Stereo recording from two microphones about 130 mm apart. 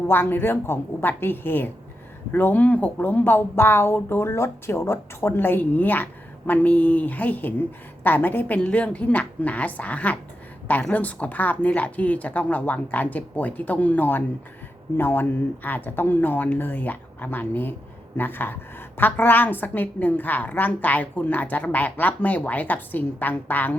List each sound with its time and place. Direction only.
0.1 s a woman's voice: 15° left (ahead or behind)